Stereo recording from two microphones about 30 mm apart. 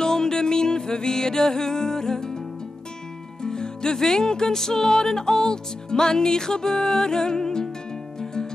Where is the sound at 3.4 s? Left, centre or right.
Left.